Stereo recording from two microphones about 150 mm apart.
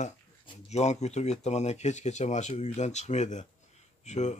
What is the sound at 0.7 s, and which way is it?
Speech, 50° left (ahead or behind).